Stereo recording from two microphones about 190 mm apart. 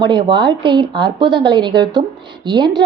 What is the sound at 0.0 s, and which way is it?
A woman's voice, 25° right (ahead or behind).